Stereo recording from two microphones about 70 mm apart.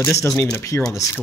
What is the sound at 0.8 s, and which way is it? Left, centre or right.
Speech, left.